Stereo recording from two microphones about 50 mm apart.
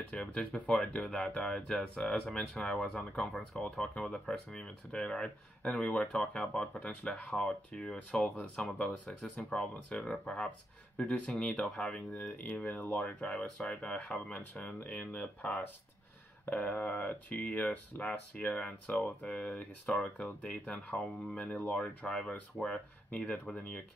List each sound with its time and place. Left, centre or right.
0.1 s speech: left
12.1 s speech: left
19.2 s speech: left
22.0 s speech: centre
23.0 s speech: left